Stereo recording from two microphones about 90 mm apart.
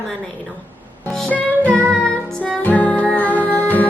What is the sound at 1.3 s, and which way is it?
Music, 15° left (ahead or behind).